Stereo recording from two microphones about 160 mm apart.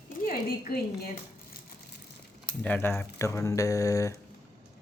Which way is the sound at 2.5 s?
10° left (ahead or behind).